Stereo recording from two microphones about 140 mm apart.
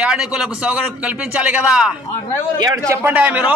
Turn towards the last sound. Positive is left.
turn(degrees=-10)  # may be behind; listen again after turning